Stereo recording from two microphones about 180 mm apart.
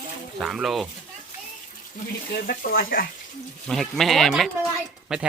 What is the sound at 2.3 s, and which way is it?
Speech, 55° left (ahead or behind).